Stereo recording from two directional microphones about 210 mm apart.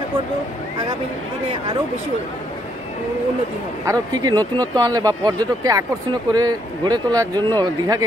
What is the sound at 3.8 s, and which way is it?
Speech, 15° right (ahead or behind).